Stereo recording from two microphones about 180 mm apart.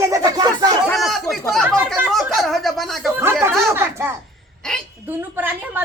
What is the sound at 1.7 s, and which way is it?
A woman's voice, 10° right (ahead or behind).